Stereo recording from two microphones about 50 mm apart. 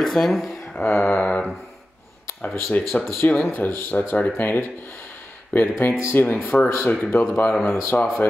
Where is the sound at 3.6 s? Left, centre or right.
Left.